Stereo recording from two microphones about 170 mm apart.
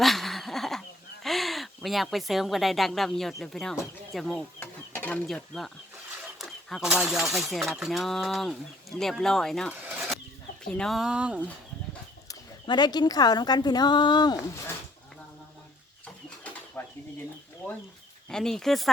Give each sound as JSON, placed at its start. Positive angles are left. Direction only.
{"t": 0.0, "sound": "a sound", "side_deg": 0}
{"t": 6.4, "sound": "speech", "side_deg": 0}
{"t": 9.9, "sound": "chicken", "side_deg": 0}
{"t": 10.6, "sound": "speech", "side_deg": 5}
{"t": 12.3, "sound": "speech", "side_deg": 25}
{"t": 16.8, "sound": "a sound", "side_deg": 10}
{"t": 18.3, "sound": "speech", "side_deg": 5}